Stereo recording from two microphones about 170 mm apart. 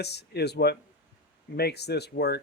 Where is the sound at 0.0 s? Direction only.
75° left (ahead or behind).